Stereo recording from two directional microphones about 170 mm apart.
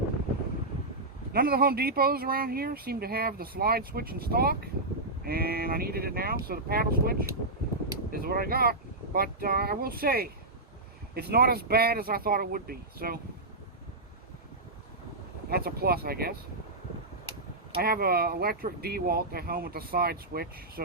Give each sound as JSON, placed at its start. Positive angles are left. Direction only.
{"t": 1.3, "sound": "speech", "side_deg": -65}
{"t": 15.4, "sound": "speech", "side_deg": -65}
{"t": 17.7, "sound": "speech", "side_deg": -65}